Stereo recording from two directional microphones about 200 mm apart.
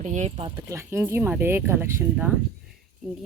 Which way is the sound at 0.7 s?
15° right (ahead or behind).